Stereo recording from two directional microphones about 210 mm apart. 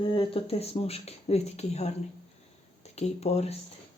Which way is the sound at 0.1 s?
25° left (ahead or behind).